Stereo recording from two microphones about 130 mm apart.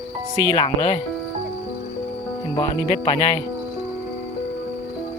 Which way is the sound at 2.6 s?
40° left (ahead or behind).